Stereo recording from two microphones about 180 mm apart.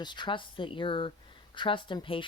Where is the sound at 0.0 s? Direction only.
25° left (ahead or behind).